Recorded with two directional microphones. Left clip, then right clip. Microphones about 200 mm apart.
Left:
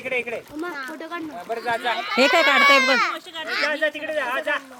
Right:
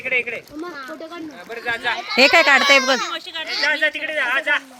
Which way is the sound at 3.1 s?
50° left (ahead or behind).